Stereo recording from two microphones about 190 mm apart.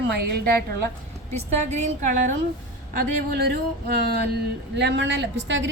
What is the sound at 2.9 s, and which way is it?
A woman's voice, 55° right (ahead or behind).